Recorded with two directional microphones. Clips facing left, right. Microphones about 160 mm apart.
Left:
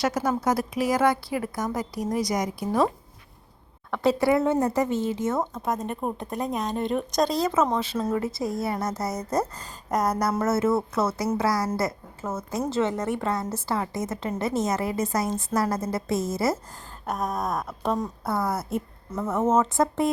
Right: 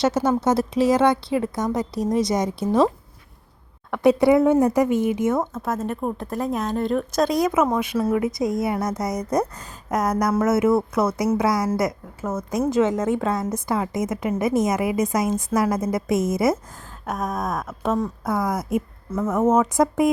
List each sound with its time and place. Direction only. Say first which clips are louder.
0.0 s a woman's voice: right 5 dB; 25° right (ahead or behind)
3.9 s a woman's voice: right 5 dB; 20° right (ahead or behind)
5.5 s a woman's voice: right 3 dB; 5° right (ahead or behind); by 16.6 s 20° right (ahead or behind)
17.3 s a woman's voice: right 2 dB; 5° right (ahead or behind)